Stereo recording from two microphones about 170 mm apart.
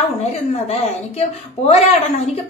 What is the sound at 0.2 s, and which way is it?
A woman's voice, 40° left (ahead or behind).